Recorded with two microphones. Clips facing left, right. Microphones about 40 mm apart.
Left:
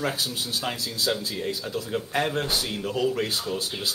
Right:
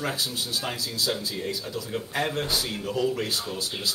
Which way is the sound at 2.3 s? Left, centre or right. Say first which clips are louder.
Left 1 dB; left.